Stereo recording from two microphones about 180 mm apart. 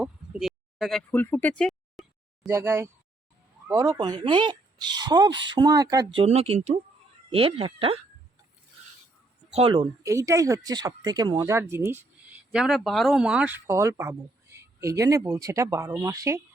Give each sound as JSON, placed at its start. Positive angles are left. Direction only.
{"t": 0.0, "sound": "a sound", "side_deg": -5}
{"t": 2.5, "sound": "speech", "side_deg": -15}
{"t": 9.6, "sound": "speech", "side_deg": -30}
{"t": 10.0, "sound": "speech", "side_deg": -15}